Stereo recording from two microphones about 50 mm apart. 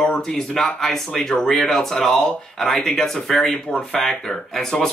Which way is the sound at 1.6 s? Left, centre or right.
Centre.